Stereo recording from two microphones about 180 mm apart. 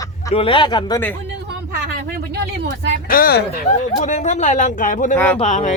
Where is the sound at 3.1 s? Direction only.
55° left (ahead or behind).